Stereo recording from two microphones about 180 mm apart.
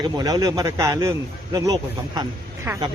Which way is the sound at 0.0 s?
20° right (ahead or behind).